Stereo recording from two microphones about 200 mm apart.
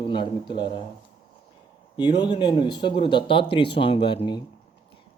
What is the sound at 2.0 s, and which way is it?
Speech, 20° left (ahead or behind).